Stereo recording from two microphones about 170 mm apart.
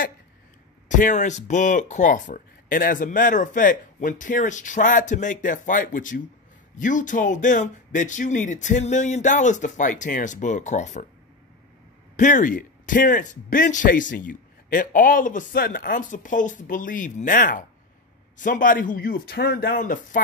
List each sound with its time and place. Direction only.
0.8 s speech: 50° left (ahead or behind)
12.2 s speech: 50° left (ahead or behind)